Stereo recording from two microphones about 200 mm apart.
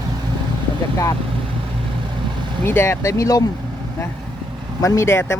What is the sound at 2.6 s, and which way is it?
Speech, 10° left (ahead or behind).